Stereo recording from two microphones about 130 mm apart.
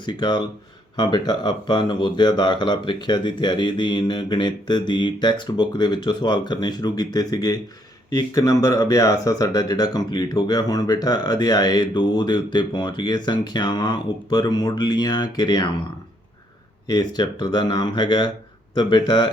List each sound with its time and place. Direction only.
0.0 s speech: 35° left (ahead or behind)
16.8 s speech: 30° left (ahead or behind)